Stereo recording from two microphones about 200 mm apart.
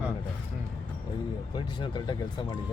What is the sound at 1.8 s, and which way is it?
Speech, 25° left (ahead or behind).